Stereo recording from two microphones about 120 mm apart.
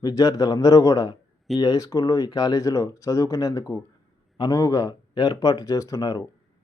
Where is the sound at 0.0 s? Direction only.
30° left (ahead or behind).